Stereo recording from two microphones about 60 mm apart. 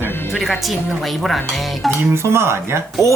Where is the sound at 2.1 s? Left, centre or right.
Right.